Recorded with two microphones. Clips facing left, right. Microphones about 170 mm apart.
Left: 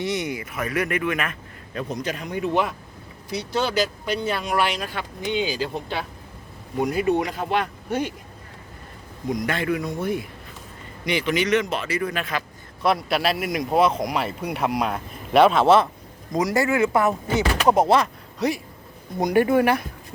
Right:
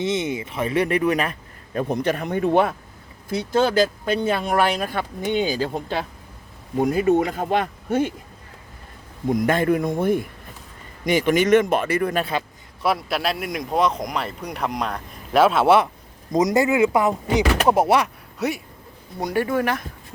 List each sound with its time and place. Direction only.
0.0 s a man's voice: 25° right (ahead or behind)
1.8 s speech: 60° right (ahead or behind)
9.3 s speech: 50° right (ahead or behind)
12.8 s speech: centre (ahead or behind)
16.3 s speech: 20° right (ahead or behind); by 18.6 s 5° right (ahead or behind)
19.2 s speech: 15° left (ahead or behind)